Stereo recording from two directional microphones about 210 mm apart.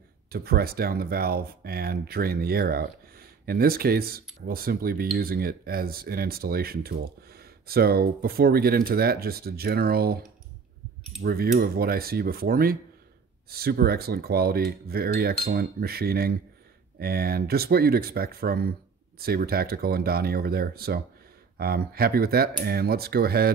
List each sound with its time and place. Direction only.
0.3 s speech: 45° right (ahead or behind)
11.2 s speech: 45° right (ahead or behind)